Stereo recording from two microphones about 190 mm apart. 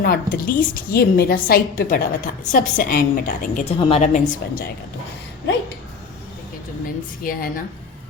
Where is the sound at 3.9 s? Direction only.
40° left (ahead or behind).